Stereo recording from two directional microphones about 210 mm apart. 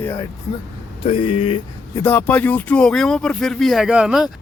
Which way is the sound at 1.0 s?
30° left (ahead or behind).